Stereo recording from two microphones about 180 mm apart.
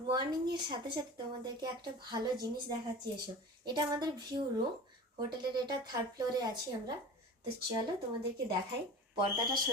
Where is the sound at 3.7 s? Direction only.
25° right (ahead or behind).